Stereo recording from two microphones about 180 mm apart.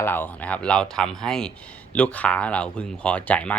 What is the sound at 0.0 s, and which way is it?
Speech, 10° left (ahead or behind).